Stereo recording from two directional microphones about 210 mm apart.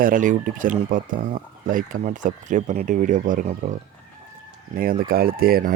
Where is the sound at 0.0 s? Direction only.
40° right (ahead or behind).